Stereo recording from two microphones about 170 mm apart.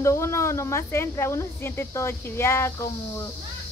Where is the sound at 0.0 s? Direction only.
15° left (ahead or behind).